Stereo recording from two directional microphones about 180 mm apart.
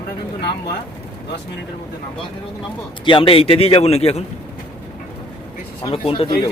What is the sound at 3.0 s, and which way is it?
A man's voice, 30° left (ahead or behind).